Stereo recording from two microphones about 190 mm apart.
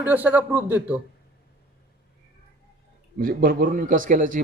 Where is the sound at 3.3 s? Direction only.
50° right (ahead or behind).